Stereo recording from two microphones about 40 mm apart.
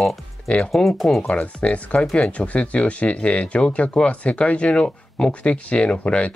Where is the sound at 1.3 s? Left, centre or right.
Left.